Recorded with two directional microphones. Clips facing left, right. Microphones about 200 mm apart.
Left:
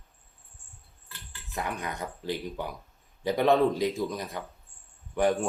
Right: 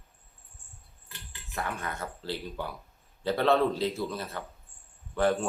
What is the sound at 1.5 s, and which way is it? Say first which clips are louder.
Speech: left 1 dB; 15° left (ahead or behind).